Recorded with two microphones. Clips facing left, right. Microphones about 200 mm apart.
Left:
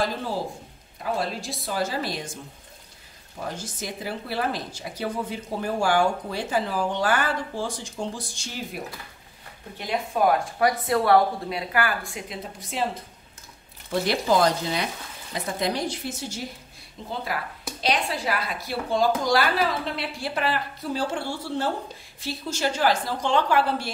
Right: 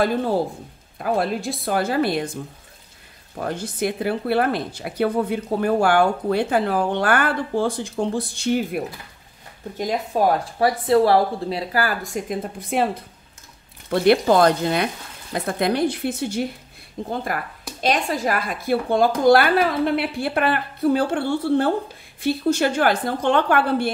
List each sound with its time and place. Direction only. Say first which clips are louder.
0.0 s speech: right 7 dB; 55° right (ahead or behind)
3.3 s speech: right 8 dB; 60° right (ahead or behind)
9.8 s speech: right 3 dB; 40° right (ahead or behind); by 12.8 s 55° right (ahead or behind)
13.8 s speech: right 7 dB; 60° right (ahead or behind)